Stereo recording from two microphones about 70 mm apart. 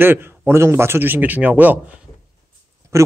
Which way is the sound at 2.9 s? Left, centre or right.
Right.